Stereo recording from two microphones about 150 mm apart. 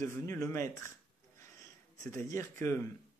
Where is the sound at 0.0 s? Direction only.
15° left (ahead or behind).